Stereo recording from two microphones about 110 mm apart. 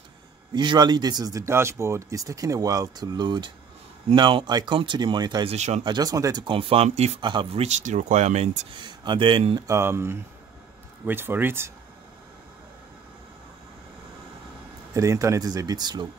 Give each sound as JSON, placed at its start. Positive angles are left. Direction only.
{"t": 0.5, "sound": "speech", "side_deg": -40}
{"t": 5.5, "sound": "speech", "side_deg": -80}
{"t": 5.9, "sound": "speech", "side_deg": -35}
{"t": 6.4, "sound": "speech", "side_deg": -55}
{"t": 7.6, "sound": "speech", "side_deg": -90}
{"t": 8.7, "sound": "speech", "side_deg": -45}
{"t": 9.7, "sound": "speech", "side_deg": -25}
{"t": 15.0, "sound": "speech", "side_deg": -30}